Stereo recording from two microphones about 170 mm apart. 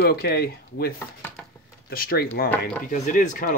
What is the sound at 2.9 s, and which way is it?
Speech, 45° left (ahead or behind).